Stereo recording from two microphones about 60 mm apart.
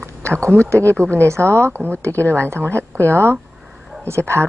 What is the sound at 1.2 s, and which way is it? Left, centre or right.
Speech, right.